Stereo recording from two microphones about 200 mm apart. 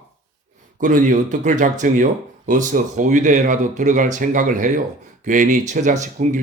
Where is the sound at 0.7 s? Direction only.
40° right (ahead or behind).